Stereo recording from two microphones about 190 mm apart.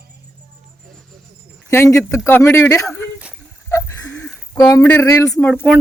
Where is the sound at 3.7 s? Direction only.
15° left (ahead or behind).